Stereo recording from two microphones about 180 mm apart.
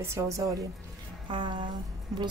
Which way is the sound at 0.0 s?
15° right (ahead or behind).